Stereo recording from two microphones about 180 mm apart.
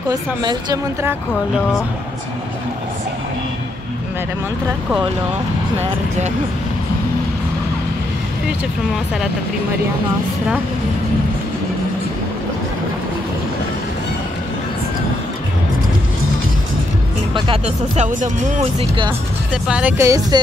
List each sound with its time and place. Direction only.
0.1 s a woman's voice: 25° right (ahead or behind)
17.3 s speech: 30° right (ahead or behind)
19.5 s speech: 5° right (ahead or behind)